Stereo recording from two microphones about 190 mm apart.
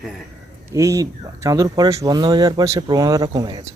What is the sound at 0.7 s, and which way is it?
Speech, 15° right (ahead or behind).